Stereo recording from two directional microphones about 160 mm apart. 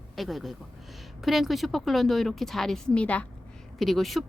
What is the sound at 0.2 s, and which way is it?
A woman's voice, centre (ahead or behind).